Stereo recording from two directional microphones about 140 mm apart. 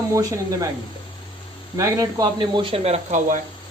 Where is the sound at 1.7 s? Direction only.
25° right (ahead or behind).